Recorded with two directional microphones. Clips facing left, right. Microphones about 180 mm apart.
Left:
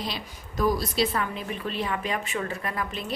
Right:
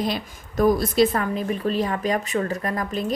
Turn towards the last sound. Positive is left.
turn(degrees=-40)  # may be behind; listen again after turning